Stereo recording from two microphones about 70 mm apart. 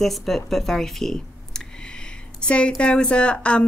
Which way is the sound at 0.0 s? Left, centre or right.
Centre.